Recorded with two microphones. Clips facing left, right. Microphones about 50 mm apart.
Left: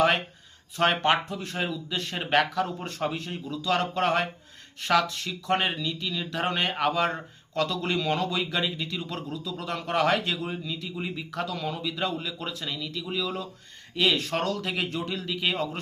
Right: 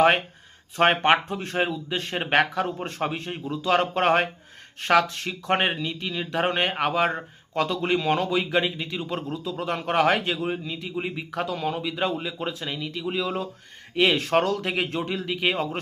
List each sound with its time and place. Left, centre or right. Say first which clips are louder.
0.8 s speech: right 4 dB; right